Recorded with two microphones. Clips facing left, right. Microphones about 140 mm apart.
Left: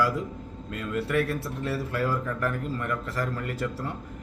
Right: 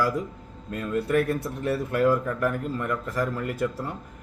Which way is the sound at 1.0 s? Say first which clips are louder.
Right 3 dB; 20° right (ahead or behind).